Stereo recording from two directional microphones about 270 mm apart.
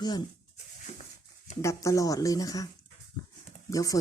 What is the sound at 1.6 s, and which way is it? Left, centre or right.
Speech, centre.